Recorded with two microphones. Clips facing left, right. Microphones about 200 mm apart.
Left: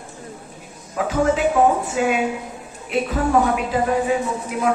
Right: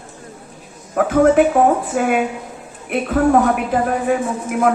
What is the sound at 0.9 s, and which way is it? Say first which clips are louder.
A woman's voice: right 7 dB; 55° right (ahead or behind).